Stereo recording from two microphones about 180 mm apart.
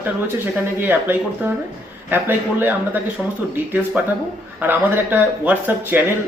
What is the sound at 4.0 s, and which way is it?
Speech, 5° right (ahead or behind).